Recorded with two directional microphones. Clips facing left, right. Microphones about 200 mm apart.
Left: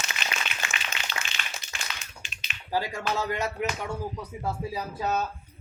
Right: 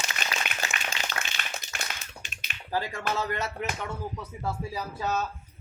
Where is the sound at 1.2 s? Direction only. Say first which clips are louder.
Right 2 dB; 60° right (ahead or behind).